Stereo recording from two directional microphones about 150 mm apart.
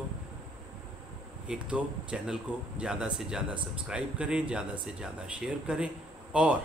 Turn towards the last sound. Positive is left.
turn(degrees=-5)  # may be behind; listen again after turning